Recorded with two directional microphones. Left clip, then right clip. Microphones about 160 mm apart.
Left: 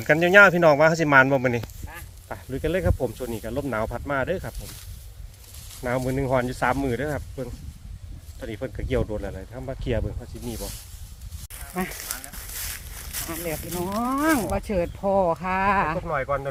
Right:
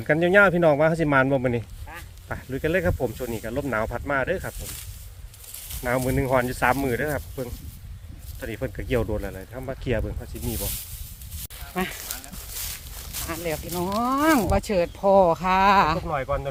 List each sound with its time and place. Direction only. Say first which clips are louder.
0.0 s speech: left 3 dB; centre (ahead or behind)
5.8 s speech: right 1 dB; 10° right (ahead or behind)
11.7 s speech: right 2 dB; 20° right (ahead or behind)
13.2 s speech: right 3 dB; 30° right (ahead or behind)
16.0 s speech: left 1 dB; centre (ahead or behind)